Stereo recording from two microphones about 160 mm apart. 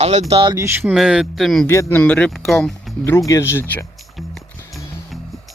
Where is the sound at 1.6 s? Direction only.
15° left (ahead or behind).